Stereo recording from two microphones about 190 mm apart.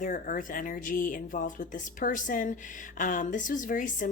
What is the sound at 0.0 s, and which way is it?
Speech, 40° left (ahead or behind).